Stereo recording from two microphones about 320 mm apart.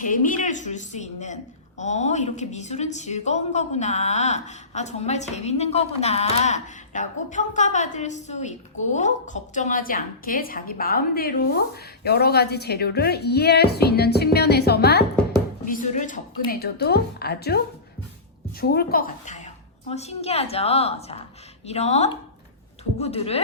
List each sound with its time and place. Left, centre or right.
0.0 s a woman's voice: left
18.6 s a woman's voice: left